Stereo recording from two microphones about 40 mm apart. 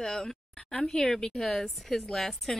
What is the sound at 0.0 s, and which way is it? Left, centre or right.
Speech, centre.